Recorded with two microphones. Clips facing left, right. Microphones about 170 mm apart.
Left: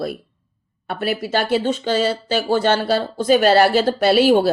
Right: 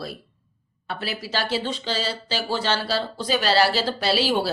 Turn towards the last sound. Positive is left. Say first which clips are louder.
# left 9 dB
turn(degrees=50)  # may be behind; listen again after turning